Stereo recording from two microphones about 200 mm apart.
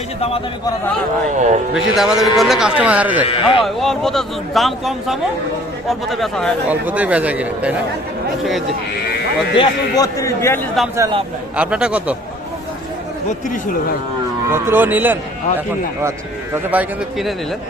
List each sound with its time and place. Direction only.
0.2 s speech: 30° left (ahead or behind)
1.3 s speech: 35° right (ahead or behind)
1.7 s a man's voice: centre (ahead or behind)
3.2 s speech: 25° left (ahead or behind)
3.6 s a man's voice: centre (ahead or behind)
9.6 s a man's voice: 20° left (ahead or behind)
10.9 s speech: 15° right (ahead or behind)
11.5 s a man's voice: 5° right (ahead or behind)
14.5 s speech: 10° right (ahead or behind)
16.7 s a man's voice: centre (ahead or behind)